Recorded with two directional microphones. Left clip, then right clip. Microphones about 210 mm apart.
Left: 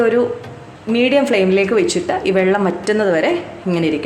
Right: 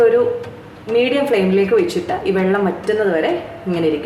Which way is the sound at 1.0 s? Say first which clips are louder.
Left 2 dB; 45° left (ahead or behind).